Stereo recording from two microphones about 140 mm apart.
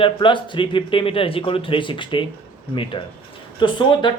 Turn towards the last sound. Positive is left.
turn(degrees=35)  # may be behind; listen again after turning